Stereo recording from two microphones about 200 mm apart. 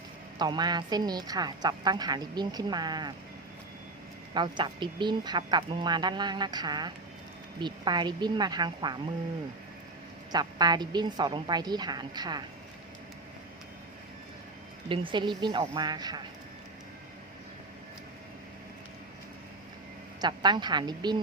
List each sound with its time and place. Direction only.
0.3 s a woman's voice: 20° right (ahead or behind)
4.4 s a woman's voice: 25° right (ahead or behind)
10.3 s a woman's voice: 20° right (ahead or behind)
14.8 s a woman's voice: 25° right (ahead or behind)
20.2 s a woman's voice: 20° right (ahead or behind)